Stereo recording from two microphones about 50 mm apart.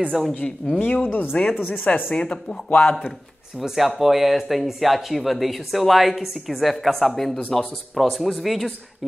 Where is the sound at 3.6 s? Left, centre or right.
Centre.